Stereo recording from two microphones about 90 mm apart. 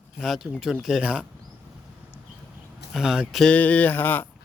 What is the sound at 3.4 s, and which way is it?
Mantra, 15° left (ahead or behind).